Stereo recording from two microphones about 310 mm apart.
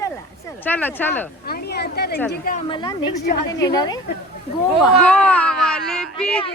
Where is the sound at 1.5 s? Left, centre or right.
Left.